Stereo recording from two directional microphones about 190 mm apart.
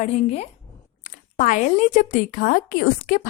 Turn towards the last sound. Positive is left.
turn(degrees=45)  # may be behind; listen again after turning